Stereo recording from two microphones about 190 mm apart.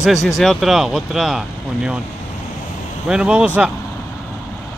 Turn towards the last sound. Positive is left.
turn(degrees=-5)  # may be behind; listen again after turning